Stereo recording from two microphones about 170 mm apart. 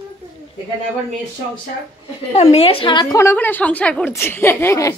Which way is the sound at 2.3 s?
35° left (ahead or behind).